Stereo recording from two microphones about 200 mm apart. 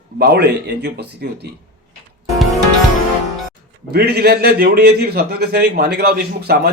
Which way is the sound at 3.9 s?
50° right (ahead or behind).